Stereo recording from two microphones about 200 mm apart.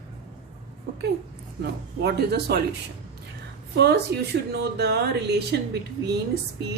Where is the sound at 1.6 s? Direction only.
55° right (ahead or behind).